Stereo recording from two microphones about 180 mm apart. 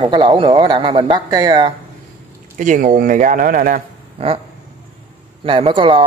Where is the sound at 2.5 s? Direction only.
45° right (ahead or behind).